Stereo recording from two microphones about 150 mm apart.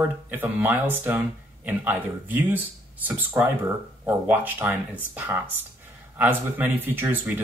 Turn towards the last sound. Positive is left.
turn(degrees=-15)  # may be behind; listen again after turning